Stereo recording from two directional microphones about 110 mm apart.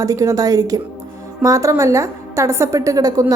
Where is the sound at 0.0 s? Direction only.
30° right (ahead or behind).